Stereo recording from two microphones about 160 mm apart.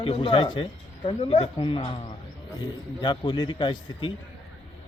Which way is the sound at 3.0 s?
30° left (ahead or behind).